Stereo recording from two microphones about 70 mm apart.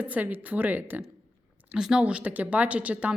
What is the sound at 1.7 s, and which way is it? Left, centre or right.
Speech, centre.